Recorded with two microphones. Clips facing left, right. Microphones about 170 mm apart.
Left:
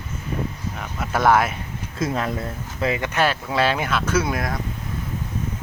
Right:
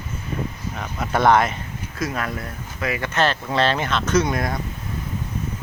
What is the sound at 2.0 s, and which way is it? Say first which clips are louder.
Speech: left 3 dB; 25° left (ahead or behind).